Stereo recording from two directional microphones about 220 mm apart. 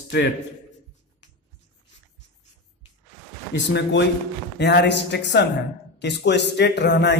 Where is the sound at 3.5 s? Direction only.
55° left (ahead or behind).